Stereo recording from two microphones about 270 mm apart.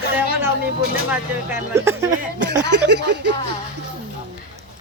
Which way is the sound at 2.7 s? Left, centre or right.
Right.